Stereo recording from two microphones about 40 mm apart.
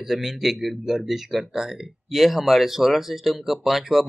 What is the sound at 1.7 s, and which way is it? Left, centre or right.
Speech, centre.